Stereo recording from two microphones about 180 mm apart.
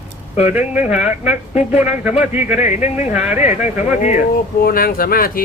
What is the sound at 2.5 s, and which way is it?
Speech, 40° left (ahead or behind).